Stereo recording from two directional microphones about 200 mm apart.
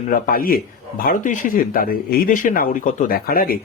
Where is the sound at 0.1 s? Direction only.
45° left (ahead or behind).